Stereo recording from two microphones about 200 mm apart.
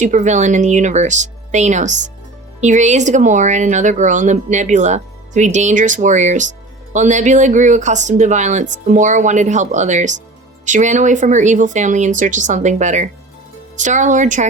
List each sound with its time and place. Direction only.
0.0 s speech: 40° right (ahead or behind)